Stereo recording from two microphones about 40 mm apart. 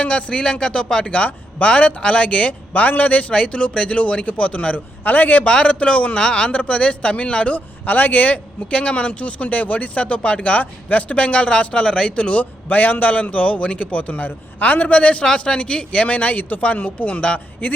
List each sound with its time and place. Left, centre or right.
0.0 s speech: left
1.1 s speech: left
3.3 s speech: left
5.0 s speech: left
5.5 s speech: left
7.9 s speech: left
8.7 s speech: left
12.4 s speech: left
14.9 s speech: left